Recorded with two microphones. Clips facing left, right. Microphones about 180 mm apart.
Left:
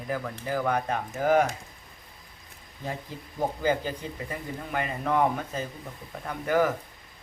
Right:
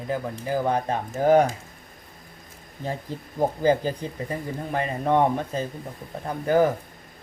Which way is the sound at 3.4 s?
35° right (ahead or behind).